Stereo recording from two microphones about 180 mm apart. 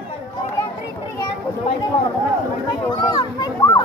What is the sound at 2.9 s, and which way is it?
Children playing, 25° left (ahead or behind).